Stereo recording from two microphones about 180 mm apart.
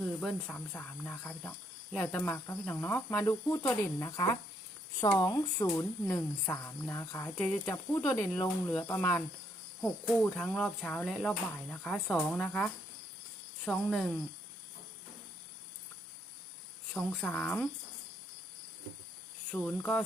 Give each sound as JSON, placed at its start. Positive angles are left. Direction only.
{"t": 0.2, "sound": "speech", "side_deg": 5}
{"t": 5.2, "sound": "speech", "side_deg": 20}
{"t": 16.9, "sound": "speech", "side_deg": 5}
{"t": 19.5, "sound": "speech", "side_deg": 5}